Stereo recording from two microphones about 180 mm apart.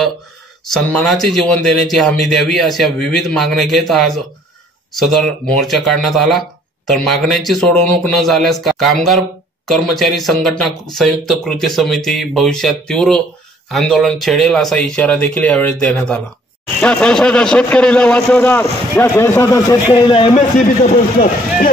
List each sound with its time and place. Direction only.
0.7 s a man's voice: 5° left (ahead or behind); by 20.3 s 30° left (ahead or behind)